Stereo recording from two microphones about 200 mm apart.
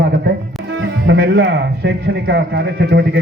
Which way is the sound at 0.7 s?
60° right (ahead or behind).